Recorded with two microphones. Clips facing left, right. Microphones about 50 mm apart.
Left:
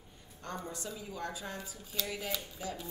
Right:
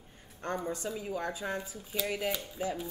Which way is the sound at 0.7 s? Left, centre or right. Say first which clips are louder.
Right 7 dB; right.